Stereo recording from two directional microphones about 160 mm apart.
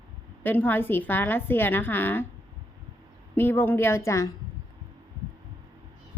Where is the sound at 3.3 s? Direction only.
15° left (ahead or behind).